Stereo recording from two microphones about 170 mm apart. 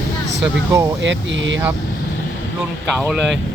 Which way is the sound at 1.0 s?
90° right.